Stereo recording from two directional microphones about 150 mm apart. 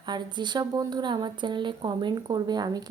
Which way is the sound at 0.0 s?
30° right (ahead or behind).